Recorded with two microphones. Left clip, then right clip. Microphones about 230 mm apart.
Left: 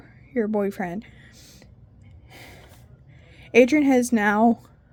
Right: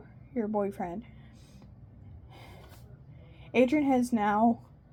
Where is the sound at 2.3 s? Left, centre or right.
Left.